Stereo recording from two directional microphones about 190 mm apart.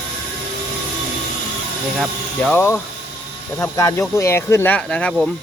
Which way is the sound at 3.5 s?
15° left (ahead or behind).